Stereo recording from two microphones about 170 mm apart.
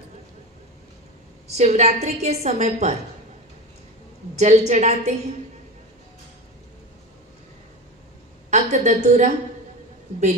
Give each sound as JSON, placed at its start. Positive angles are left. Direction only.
{"t": 1.5, "sound": "a woman's voice", "side_deg": -40}
{"t": 4.4, "sound": "a woman's voice", "side_deg": -45}
{"t": 8.5, "sound": "a woman's voice", "side_deg": -45}